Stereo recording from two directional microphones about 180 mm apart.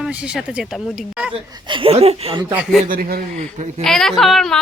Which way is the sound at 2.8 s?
50° right (ahead or behind).